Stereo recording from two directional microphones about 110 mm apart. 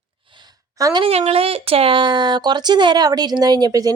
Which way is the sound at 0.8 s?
40° right (ahead or behind).